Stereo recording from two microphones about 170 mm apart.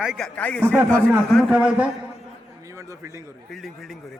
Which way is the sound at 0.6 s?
15° right (ahead or behind).